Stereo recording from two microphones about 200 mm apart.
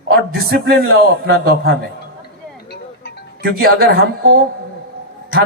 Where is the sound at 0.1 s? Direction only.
50° right (ahead or behind).